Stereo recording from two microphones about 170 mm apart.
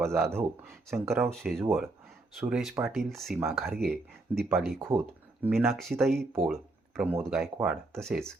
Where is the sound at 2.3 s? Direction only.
5° right (ahead or behind).